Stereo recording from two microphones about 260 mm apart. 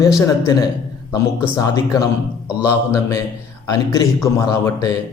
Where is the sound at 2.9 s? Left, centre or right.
Centre.